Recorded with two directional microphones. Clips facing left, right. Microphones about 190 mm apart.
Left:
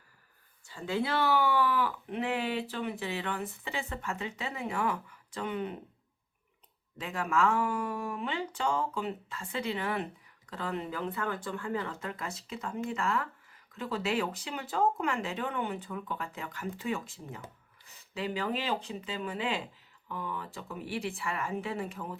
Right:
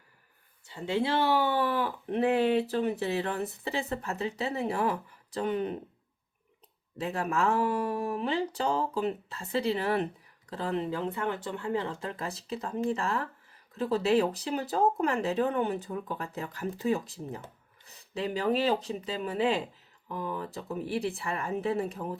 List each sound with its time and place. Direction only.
0.7 s speech: 25° right (ahead or behind)
7.0 s speech: 35° right (ahead or behind)